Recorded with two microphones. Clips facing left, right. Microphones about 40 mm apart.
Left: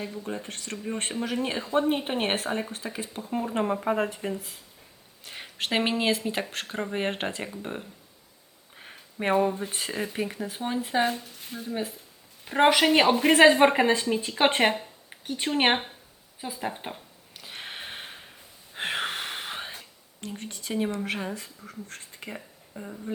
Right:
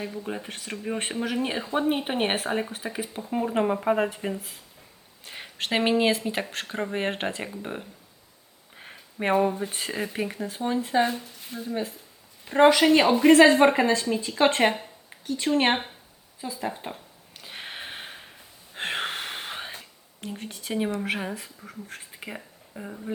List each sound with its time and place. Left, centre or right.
0.0 s speech: centre
10.5 s speech: centre
12.6 s speech: left
16.9 s a sound: centre
20.2 s speech: centre